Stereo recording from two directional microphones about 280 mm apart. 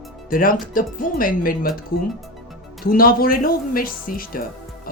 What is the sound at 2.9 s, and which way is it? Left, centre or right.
Speech, left.